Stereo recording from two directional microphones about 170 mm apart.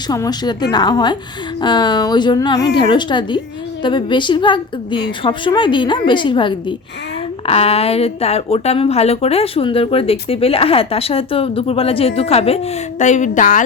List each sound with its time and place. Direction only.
0.1 s a woman's voice: 20° left (ahead or behind); by 13.6 s 50° left (ahead or behind)